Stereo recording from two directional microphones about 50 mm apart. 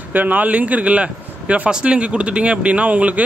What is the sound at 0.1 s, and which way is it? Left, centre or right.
Speech, right.